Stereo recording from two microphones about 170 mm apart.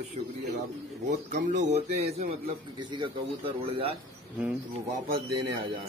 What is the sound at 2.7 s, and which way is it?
Speech, 25° right (ahead or behind).